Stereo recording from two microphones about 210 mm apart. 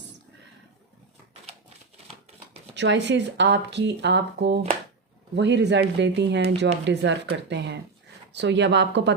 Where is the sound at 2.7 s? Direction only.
55° right (ahead or behind).